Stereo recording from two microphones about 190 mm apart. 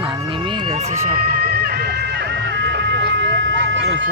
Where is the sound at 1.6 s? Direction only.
55° right (ahead or behind).